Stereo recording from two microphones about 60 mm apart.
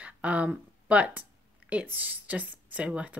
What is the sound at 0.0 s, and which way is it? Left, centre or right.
Speech, right.